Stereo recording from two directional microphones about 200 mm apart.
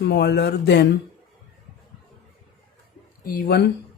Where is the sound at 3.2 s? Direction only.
45° left (ahead or behind).